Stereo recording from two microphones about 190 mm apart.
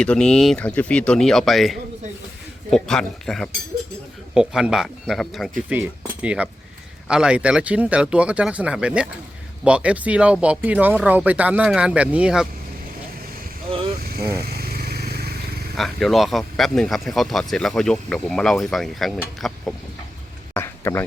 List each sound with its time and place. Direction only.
0.0 s speech: 5° left (ahead or behind)
14.0 s vehicle: 55° right (ahead or behind)
15.7 s speech: centre (ahead or behind)
20.5 s a sound: 10° left (ahead or behind)